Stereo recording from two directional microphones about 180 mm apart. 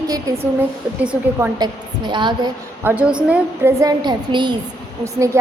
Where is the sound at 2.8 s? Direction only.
5° right (ahead or behind).